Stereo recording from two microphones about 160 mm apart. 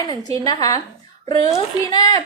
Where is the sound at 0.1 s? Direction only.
25° left (ahead or behind).